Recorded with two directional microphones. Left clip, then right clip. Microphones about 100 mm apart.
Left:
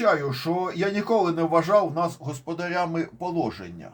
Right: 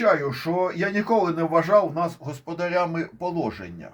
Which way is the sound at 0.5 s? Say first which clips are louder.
Right 4 dB; 30° right (ahead or behind).